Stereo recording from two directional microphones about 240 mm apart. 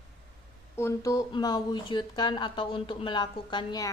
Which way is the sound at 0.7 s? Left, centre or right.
Centre.